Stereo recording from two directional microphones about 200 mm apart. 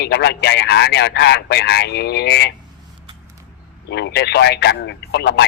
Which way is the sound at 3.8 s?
55° left (ahead or behind).